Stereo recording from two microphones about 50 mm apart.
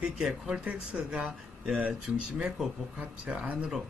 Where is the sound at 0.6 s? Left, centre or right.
Right.